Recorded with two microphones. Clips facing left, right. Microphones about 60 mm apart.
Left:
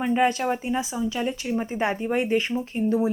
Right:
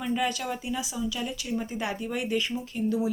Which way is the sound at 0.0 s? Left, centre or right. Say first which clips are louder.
Left 7 dB; left.